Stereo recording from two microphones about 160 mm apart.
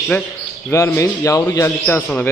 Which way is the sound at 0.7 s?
20° left (ahead or behind).